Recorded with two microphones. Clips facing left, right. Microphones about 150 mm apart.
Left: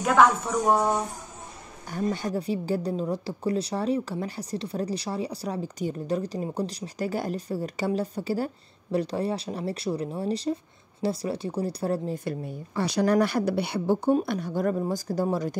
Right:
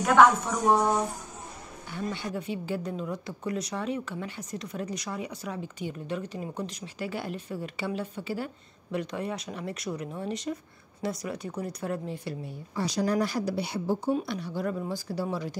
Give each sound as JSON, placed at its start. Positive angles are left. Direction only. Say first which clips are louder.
{"t": 0.0, "sound": "speech", "louder": "even", "side_deg": 0}
{"t": 1.9, "sound": "a woman's voice", "louder": "left 6 dB", "side_deg": 40}
{"t": 12.3, "sound": "speech", "louder": "left 5 dB", "side_deg": 55}
{"t": 14.1, "sound": "speech", "louder": "left 5 dB", "side_deg": 50}